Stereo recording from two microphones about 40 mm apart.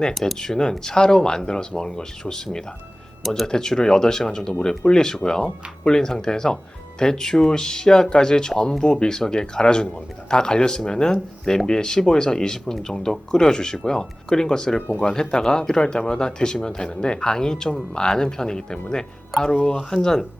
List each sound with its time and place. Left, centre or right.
0.1 s speech: centre
0.3 s speech: centre